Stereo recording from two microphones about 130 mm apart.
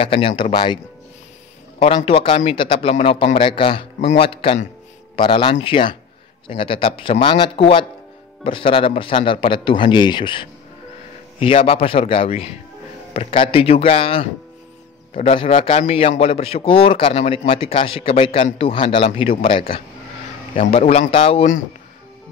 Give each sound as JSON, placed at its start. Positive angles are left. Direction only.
{"t": 0.0, "sound": "speech", "side_deg": 45}
{"t": 2.0, "sound": "a man's voice", "side_deg": 45}
{"t": 20.8, "sound": "speech", "side_deg": 75}
{"t": 21.1, "sound": "a man's voice", "side_deg": 45}